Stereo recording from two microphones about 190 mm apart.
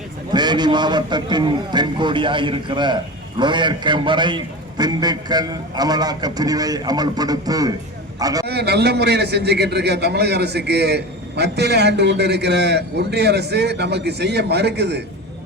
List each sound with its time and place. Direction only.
0.3 s a man's voice: 20° right (ahead or behind)
8.4 s a man's voice: 60° right (ahead or behind)